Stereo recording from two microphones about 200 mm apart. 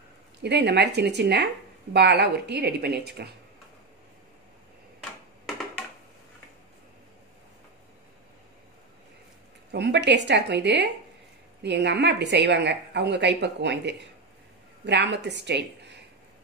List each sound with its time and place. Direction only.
0.4 s speech: 55° right (ahead or behind)
9.7 s speech: 60° right (ahead or behind)